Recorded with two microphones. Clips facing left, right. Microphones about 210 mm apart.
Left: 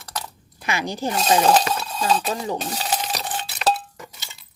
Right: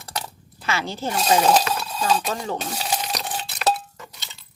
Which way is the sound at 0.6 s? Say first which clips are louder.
Left 1 dB; 15° left (ahead or behind).